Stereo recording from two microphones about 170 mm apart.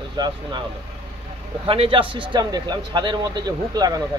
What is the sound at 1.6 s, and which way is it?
A man's voice, 30° right (ahead or behind).